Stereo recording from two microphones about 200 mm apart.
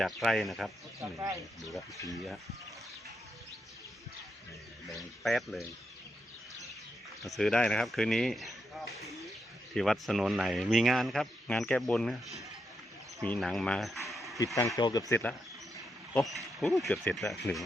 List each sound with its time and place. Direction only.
0.0 s speech: centre (ahead or behind)
5.2 s speech: centre (ahead or behind)
7.2 s speech: centre (ahead or behind)
9.7 s speech: centre (ahead or behind)
14.1 s a sound: centre (ahead or behind)
14.3 s speech: 15° left (ahead or behind)
15.1 s speech: 10° left (ahead or behind)